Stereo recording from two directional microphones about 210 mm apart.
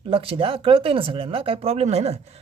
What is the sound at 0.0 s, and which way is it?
Speech, 25° right (ahead or behind).